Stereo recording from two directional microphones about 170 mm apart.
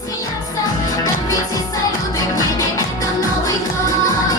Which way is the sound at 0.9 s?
20° left (ahead or behind).